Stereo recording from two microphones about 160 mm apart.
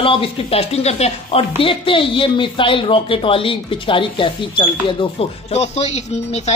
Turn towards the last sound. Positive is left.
turn(degrees=45)  # may be behind; listen again after turning